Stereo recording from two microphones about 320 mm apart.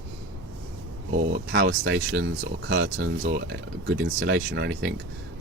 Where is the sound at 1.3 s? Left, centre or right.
Right.